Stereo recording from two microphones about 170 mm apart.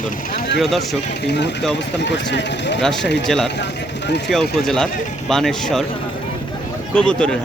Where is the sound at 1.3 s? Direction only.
80° left.